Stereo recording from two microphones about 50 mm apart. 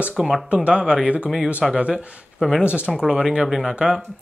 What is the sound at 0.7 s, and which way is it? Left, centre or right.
Speech, centre.